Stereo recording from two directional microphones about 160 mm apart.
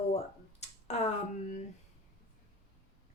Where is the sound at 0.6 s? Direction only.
45° left (ahead or behind).